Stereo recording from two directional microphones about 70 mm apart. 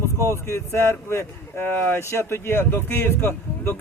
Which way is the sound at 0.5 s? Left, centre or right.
Left.